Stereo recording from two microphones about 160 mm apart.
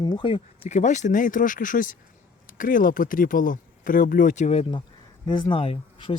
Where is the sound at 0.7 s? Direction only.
50° left (ahead or behind).